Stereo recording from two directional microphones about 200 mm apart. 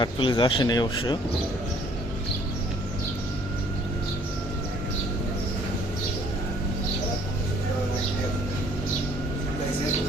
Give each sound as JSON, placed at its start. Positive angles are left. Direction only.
{"t": 0.0, "sound": "speech", "side_deg": 25}